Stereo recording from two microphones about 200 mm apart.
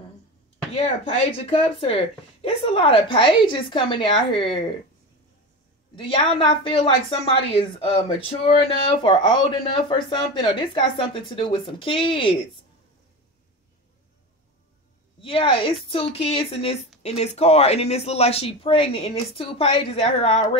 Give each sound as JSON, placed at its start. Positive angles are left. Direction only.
{"t": 0.7, "sound": "a woman's voice", "side_deg": 30}
{"t": 5.9, "sound": "a woman's voice", "side_deg": 25}
{"t": 15.2, "sound": "a woman's voice", "side_deg": 25}